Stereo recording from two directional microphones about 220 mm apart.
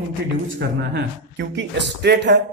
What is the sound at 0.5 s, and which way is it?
A man's voice, 50° right (ahead or behind).